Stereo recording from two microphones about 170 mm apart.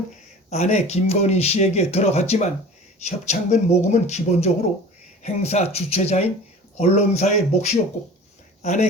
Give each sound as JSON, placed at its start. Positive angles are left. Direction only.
{"t": 0.5, "sound": "speech", "side_deg": 40}